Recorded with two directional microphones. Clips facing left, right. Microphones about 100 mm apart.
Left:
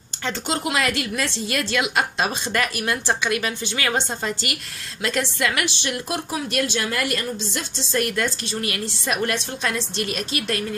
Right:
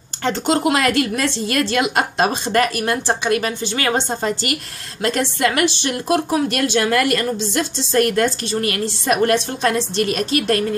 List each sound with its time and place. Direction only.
0.2 s a woman's voice: 50° right (ahead or behind)